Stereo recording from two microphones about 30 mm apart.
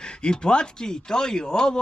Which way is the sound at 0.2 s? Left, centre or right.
Left.